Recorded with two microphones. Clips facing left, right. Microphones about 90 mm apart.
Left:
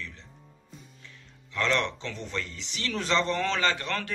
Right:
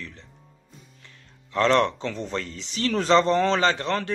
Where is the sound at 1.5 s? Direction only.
40° right (ahead or behind).